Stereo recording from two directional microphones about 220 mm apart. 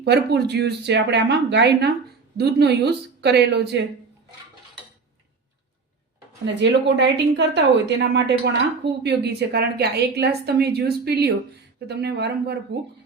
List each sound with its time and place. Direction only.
0.0 s a woman's voice: 50° right (ahead or behind)
6.4 s a woman's voice: 55° right (ahead or behind)